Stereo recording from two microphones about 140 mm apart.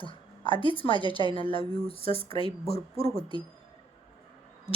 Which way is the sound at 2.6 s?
45° left (ahead or behind).